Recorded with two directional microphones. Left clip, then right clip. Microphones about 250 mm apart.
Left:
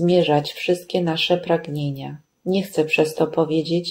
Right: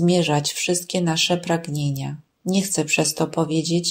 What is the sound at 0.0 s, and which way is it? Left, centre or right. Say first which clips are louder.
Speech: left 3 dB; right.